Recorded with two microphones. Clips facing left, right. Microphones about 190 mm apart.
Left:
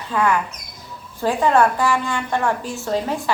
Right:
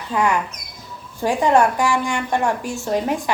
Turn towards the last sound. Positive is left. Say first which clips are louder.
# right 1 dB
turn(degrees=-15)  # may be behind; listen again after turning